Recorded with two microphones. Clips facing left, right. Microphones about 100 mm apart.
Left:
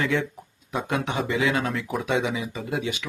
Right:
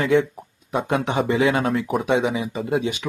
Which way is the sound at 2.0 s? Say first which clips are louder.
Right 5 dB; 30° right (ahead or behind).